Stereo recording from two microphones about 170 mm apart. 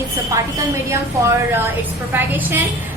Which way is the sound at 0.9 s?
15° right (ahead or behind).